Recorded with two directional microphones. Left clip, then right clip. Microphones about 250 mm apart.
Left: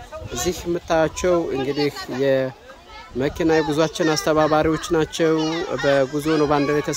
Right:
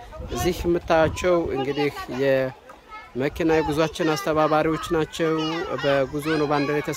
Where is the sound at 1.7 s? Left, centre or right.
Right.